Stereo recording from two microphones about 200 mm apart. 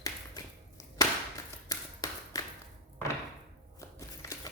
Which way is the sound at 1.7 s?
15° left (ahead or behind).